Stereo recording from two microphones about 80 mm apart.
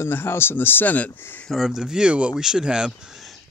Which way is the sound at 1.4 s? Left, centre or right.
Centre.